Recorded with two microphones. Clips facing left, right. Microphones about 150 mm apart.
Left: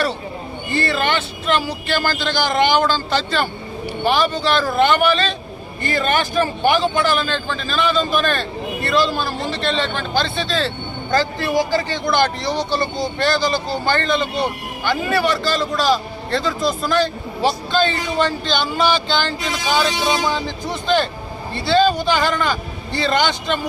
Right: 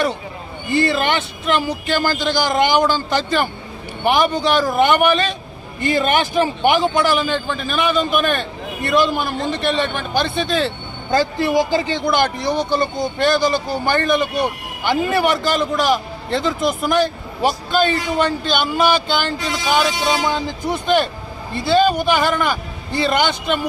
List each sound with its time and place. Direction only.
0.7 s a man's voice: 15° right (ahead or behind)